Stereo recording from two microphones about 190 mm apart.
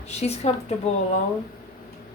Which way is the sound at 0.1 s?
35° left (ahead or behind).